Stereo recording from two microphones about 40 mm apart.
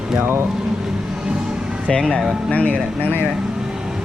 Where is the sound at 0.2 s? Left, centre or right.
Right.